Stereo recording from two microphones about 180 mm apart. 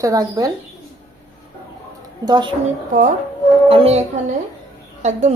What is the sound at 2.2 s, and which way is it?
Speech, 25° right (ahead or behind).